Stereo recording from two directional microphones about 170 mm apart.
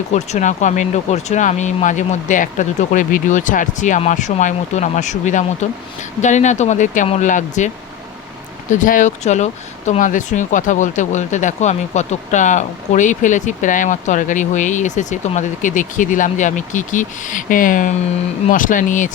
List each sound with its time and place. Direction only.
0.1 s speech: 45° left (ahead or behind)
8.7 s speech: 50° left (ahead or behind)